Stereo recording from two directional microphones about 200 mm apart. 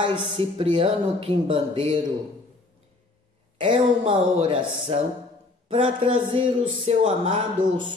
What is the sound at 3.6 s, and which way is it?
Speech, 25° right (ahead or behind).